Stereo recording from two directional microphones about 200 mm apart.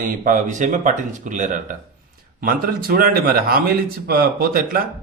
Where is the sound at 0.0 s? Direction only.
40° right (ahead or behind).